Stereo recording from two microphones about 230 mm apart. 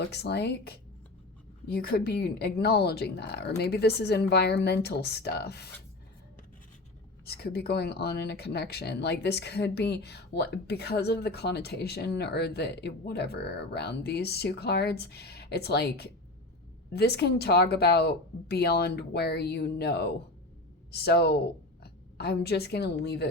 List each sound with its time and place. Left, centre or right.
0.1 s speech: left
7.3 s a woman's voice: left